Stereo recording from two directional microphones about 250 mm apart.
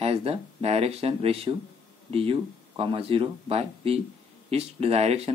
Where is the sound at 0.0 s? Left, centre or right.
Right.